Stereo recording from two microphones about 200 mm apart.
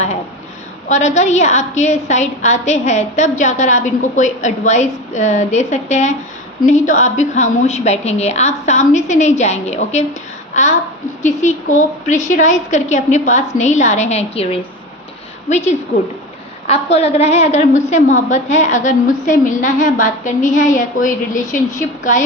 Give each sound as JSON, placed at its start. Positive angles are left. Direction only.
{"t": 0.9, "sound": "a woman's voice", "side_deg": 35}